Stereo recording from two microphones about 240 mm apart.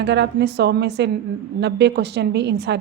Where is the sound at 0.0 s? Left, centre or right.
Right.